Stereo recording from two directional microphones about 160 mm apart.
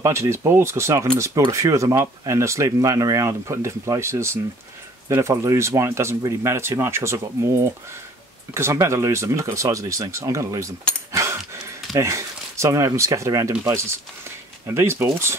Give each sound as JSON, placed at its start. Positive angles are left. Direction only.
{"t": 0.0, "sound": "speech", "side_deg": -20}
{"t": 11.1, "sound": "a sound", "side_deg": -20}
{"t": 11.9, "sound": "speech", "side_deg": -20}